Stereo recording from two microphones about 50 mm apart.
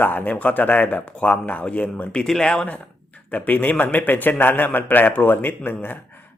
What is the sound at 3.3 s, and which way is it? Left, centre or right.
A man's voice, left.